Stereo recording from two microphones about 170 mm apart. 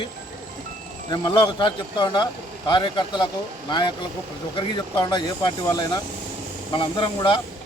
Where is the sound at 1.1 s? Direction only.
30° left (ahead or behind).